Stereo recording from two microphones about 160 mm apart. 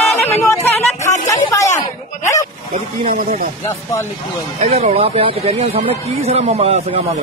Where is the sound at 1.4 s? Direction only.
20° left (ahead or behind).